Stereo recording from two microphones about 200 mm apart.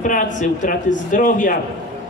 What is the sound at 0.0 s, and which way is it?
Speech, 40° left (ahead or behind).